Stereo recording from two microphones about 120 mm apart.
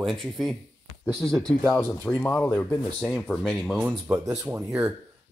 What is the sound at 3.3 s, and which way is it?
Speech, 5° left (ahead or behind).